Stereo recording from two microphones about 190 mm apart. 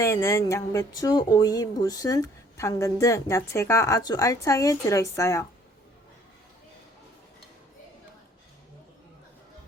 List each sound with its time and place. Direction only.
0.0 s speech: 15° left (ahead or behind)